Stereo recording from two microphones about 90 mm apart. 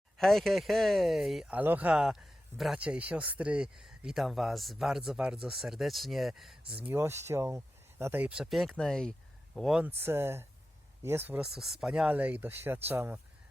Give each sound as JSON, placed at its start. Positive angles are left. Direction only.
{"t": 0.2, "sound": "speech", "side_deg": 5}
{"t": 1.5, "sound": "speech", "side_deg": -20}
{"t": 2.0, "sound": "speech", "side_deg": -5}
{"t": 6.7, "sound": "speech", "side_deg": -15}
{"t": 8.3, "sound": "speech", "side_deg": -5}
{"t": 9.8, "sound": "speech", "side_deg": -25}
{"t": 11.3, "sound": "speech", "side_deg": -5}
{"t": 12.1, "sound": "speech", "side_deg": -20}